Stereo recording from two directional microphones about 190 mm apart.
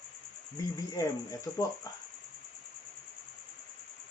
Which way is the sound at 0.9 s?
20° left (ahead or behind).